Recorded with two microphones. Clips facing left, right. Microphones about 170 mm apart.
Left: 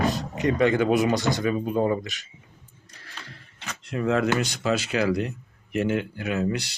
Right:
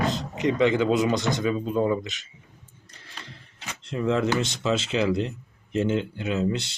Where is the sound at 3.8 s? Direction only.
25° right (ahead or behind).